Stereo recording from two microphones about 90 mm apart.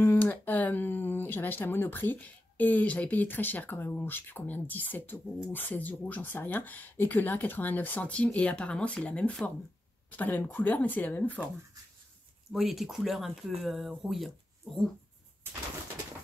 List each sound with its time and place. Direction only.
0.0 s speech: 20° left (ahead or behind)
12.5 s speech: centre (ahead or behind)